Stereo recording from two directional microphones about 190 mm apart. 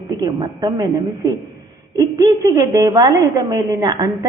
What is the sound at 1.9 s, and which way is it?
A woman's voice, 15° right (ahead or behind).